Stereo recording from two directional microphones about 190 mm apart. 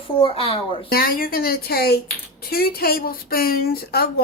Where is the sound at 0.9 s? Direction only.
50° left (ahead or behind).